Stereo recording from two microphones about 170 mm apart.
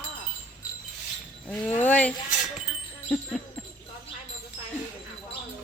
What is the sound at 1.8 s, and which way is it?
Speech, 10° left (ahead or behind).